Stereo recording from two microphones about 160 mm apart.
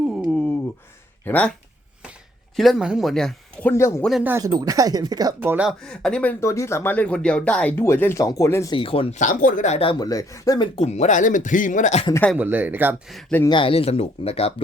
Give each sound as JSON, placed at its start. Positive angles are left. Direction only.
{"t": 0.1, "sound": "a sound", "side_deg": 0}
{"t": 1.2, "sound": "speech", "side_deg": 10}
{"t": 2.6, "sound": "speech", "side_deg": 0}
{"t": 4.2, "sound": "speech", "side_deg": -15}
{"t": 5.4, "sound": "speech", "side_deg": -10}
{"t": 5.8, "sound": "speech", "side_deg": 5}
{"t": 6.4, "sound": "speech", "side_deg": 20}
{"t": 8.7, "sound": "speech", "side_deg": 35}
{"t": 9.1, "sound": "speech", "side_deg": 55}
{"t": 10.8, "sound": "speech", "side_deg": 45}
{"t": 12.4, "sound": "speech", "side_deg": -10}
{"t": 13.5, "sound": "speech", "side_deg": 35}